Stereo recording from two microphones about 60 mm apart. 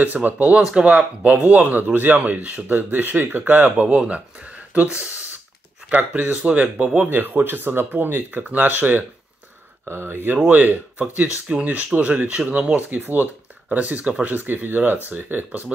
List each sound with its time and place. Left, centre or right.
0.0 s speech: right
0.6 s speech: centre
7.1 s speech: right
13.0 s speech: right